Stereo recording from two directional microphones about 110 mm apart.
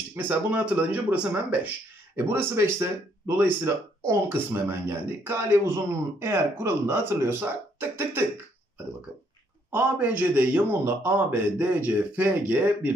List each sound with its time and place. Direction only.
0.1 s a man's voice: 15° right (ahead or behind)
9.7 s a man's voice: 15° right (ahead or behind)